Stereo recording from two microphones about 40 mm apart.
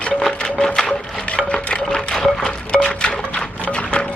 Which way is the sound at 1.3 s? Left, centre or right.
Left.